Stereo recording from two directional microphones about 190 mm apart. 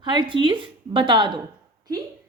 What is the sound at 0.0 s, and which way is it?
A woman's voice, 25° right (ahead or behind).